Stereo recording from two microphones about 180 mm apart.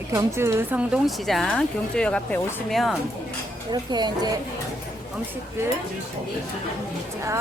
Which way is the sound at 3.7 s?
25° right (ahead or behind).